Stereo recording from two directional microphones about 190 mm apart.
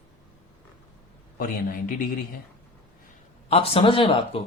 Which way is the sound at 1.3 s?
50° left (ahead or behind).